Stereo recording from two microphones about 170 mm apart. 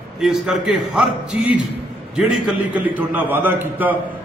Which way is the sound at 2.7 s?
10° right (ahead or behind).